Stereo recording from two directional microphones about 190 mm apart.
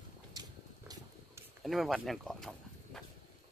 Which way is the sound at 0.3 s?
20° right (ahead or behind).